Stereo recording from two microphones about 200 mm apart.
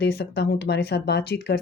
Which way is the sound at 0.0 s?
55° left (ahead or behind).